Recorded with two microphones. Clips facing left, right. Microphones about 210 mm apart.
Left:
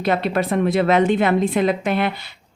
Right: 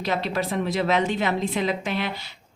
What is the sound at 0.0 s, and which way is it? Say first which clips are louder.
Speech: left 6 dB; 55° left (ahead or behind).